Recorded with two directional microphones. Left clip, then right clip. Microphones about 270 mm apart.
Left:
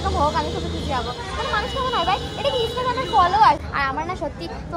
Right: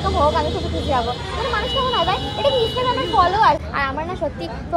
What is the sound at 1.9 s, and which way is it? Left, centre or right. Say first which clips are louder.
Speech: right 2 dB; centre.